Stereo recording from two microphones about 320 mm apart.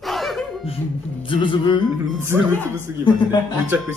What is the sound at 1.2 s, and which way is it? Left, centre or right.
Music, centre.